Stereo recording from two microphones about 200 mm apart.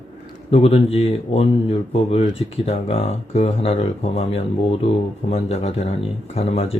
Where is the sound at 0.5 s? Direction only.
30° left (ahead or behind).